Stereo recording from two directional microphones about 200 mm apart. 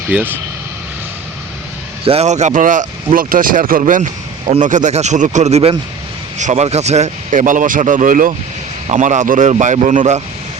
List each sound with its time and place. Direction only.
0.1 s speech: 10° right (ahead or behind)
2.0 s speech: 35° right (ahead or behind)